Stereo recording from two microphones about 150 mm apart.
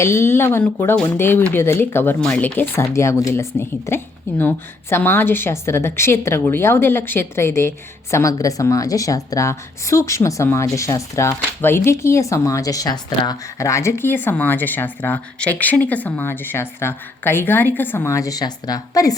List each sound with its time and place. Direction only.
0.0 s a woman's voice: 15° left (ahead or behind)